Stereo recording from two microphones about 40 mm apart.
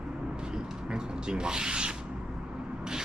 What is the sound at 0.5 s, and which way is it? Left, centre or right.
Rub, centre.